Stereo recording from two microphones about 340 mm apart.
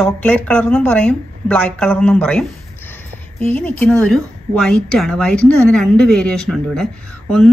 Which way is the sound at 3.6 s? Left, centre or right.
Centre.